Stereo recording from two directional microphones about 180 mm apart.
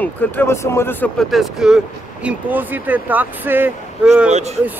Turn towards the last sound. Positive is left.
turn(degrees=-40)  # may be behind; listen again after turning